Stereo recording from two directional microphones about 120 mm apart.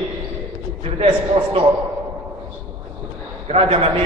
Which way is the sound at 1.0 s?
50° right (ahead or behind).